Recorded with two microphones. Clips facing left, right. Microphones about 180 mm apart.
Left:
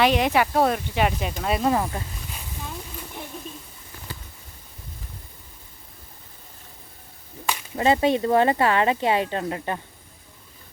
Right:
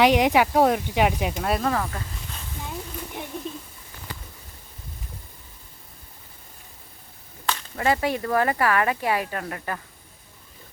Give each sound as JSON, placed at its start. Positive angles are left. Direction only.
{"t": 0.0, "sound": "speech", "side_deg": -15}
{"t": 1.4, "sound": "speech", "side_deg": 0}
{"t": 1.6, "sound": "speech", "side_deg": 20}
{"t": 7.4, "sound": "speech", "side_deg": 15}